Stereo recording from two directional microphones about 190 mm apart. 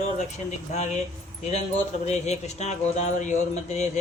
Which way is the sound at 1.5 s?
35° left (ahead or behind).